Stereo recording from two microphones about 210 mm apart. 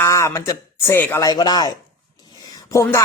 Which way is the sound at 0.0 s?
15° left (ahead or behind).